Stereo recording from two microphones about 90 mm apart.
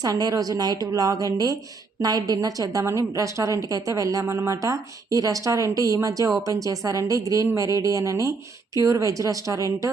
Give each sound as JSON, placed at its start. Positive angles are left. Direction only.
{"t": 0.0, "sound": "a woman's voice", "side_deg": -45}